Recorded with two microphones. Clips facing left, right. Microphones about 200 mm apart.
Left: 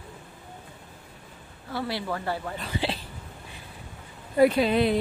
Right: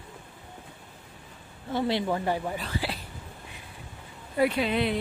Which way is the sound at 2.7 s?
25° left (ahead or behind).